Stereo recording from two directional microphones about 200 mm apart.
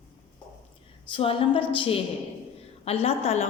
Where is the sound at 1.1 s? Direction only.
25° left (ahead or behind).